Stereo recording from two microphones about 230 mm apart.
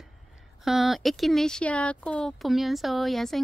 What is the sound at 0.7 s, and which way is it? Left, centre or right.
A woman's voice, centre.